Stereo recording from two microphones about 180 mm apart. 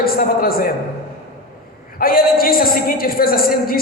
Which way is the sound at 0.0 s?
55° left (ahead or behind).